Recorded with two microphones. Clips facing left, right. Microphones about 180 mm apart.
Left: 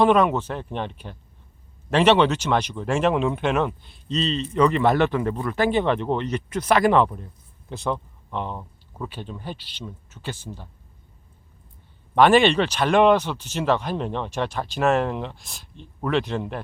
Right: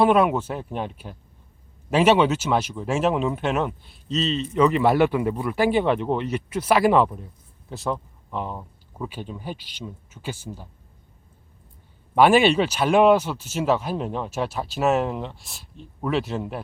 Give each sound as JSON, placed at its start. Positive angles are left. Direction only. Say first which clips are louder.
{"t": 0.0, "sound": "speech", "louder": "even", "side_deg": -10}
{"t": 12.1, "sound": "speech", "louder": "even", "side_deg": -10}